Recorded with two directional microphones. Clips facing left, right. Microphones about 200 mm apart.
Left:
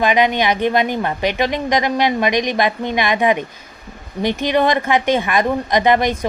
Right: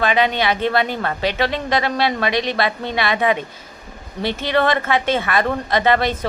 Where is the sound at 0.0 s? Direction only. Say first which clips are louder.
Left 2 dB; 15° left (ahead or behind).